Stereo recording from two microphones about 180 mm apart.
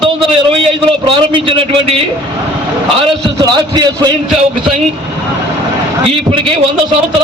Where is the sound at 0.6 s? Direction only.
30° right (ahead or behind).